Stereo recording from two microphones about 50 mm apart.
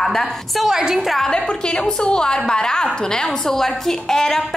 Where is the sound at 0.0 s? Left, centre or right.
Centre.